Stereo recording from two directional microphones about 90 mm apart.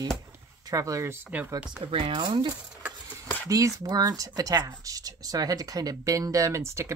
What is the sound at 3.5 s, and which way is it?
Speech, 40° right (ahead or behind).